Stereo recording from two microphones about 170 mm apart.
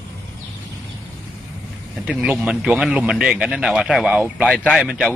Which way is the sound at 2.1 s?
5° right (ahead or behind).